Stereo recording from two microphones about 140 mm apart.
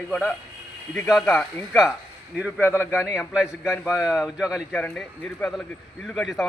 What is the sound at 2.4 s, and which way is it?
A man's voice, 10° right (ahead or behind).